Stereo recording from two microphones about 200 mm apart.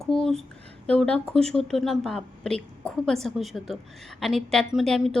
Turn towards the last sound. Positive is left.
turn(degrees=0)  # may be behind; listen again after turning